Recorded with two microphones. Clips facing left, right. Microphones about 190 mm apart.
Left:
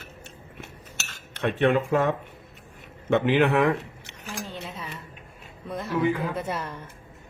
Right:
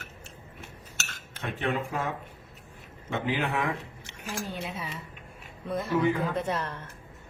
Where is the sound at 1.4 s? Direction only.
75° left (ahead or behind).